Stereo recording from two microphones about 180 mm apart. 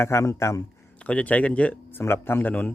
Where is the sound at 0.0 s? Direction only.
15° left (ahead or behind).